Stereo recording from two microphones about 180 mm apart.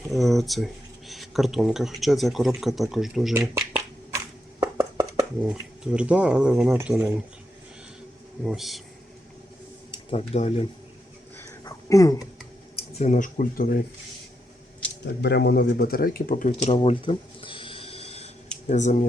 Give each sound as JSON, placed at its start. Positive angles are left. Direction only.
{"t": 0.1, "sound": "speech", "side_deg": 0}
{"t": 3.3, "sound": "speech", "side_deg": -15}
{"t": 4.6, "sound": "a sound", "side_deg": -20}
{"t": 5.4, "sound": "speech", "side_deg": -5}
{"t": 8.4, "sound": "speech", "side_deg": 0}
{"t": 9.9, "sound": "speech", "side_deg": 35}
{"t": 11.3, "sound": "a sound", "side_deg": 15}
{"t": 12.7, "sound": "speech", "side_deg": 35}
{"t": 15.0, "sound": "speech", "side_deg": 70}
{"t": 16.7, "sound": "a sound", "side_deg": 30}
{"t": 18.7, "sound": "speech", "side_deg": 40}